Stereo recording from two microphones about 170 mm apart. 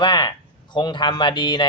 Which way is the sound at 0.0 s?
25° left (ahead or behind).